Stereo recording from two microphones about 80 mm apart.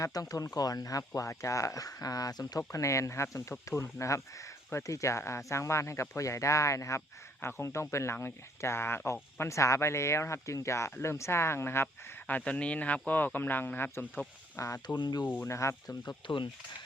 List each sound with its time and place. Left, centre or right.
0.0 s speech: left
12.5 s speech: centre
14.5 s speech: left
14.9 s speech: left
15.4 s speech: left
16.0 s speech: left